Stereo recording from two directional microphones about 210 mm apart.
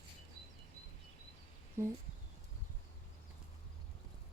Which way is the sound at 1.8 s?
15° right (ahead or behind).